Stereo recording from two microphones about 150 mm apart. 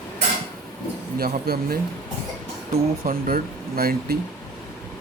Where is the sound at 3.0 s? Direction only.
75° right (ahead or behind).